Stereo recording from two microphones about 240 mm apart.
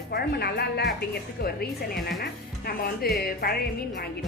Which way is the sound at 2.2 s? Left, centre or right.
Left.